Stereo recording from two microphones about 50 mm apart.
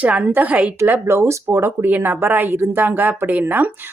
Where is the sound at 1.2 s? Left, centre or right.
Right.